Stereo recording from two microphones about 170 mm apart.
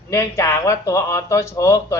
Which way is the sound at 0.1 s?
15° left (ahead or behind).